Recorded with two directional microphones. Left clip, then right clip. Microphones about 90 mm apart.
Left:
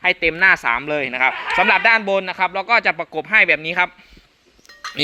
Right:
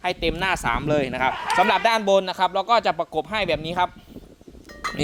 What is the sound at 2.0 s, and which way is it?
Speech, 65° right (ahead or behind).